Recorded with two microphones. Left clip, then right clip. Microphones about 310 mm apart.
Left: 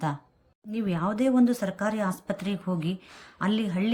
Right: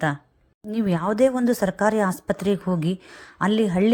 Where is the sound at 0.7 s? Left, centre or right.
Centre.